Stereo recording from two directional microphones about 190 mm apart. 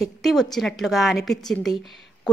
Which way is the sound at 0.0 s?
Centre (ahead or behind).